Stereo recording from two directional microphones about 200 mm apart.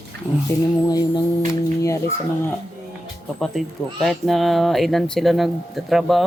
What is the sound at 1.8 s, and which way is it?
Speech, 15° left (ahead or behind).